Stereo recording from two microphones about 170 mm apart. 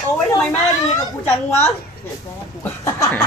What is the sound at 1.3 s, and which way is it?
Speech, 15° left (ahead or behind).